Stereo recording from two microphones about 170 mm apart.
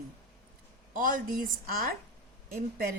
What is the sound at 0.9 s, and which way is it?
A woman's voice, 55° right (ahead or behind).